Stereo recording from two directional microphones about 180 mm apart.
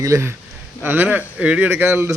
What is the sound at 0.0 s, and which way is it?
Speech, 15° right (ahead or behind).